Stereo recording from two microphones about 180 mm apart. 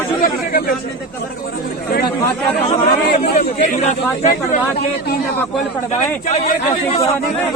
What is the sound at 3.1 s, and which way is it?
Speech, 50° left (ahead or behind).